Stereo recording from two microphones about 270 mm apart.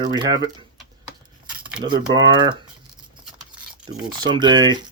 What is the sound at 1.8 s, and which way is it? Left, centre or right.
Speech, centre.